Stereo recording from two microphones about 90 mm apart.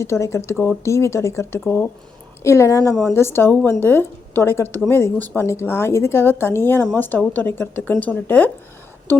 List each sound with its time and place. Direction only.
0.0 s a woman's voice: 30° left (ahead or behind)
5.1 s a woman's voice: 20° left (ahead or behind)